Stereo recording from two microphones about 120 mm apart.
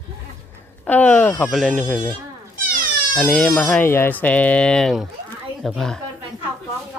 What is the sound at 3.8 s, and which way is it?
Speech, 20° left (ahead or behind).